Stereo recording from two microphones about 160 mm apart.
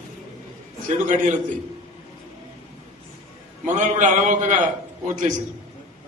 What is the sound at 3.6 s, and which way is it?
Speech, 50° right (ahead or behind).